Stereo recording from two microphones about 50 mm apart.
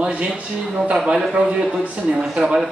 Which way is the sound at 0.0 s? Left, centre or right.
Right.